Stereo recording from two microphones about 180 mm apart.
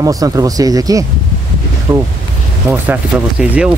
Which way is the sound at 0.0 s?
20° right (ahead or behind).